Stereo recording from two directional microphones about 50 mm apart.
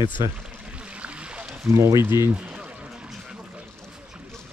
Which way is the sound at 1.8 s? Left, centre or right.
Right.